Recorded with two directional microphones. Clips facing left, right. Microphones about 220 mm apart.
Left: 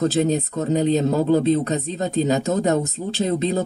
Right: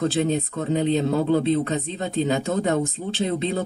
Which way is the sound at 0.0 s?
40° left (ahead or behind).